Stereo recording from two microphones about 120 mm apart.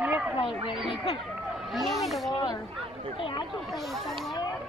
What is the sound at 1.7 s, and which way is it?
Speech, centre (ahead or behind).